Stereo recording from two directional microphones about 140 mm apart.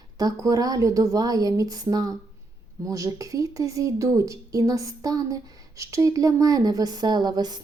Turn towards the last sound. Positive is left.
turn(degrees=-30)  # may be behind; listen again after turning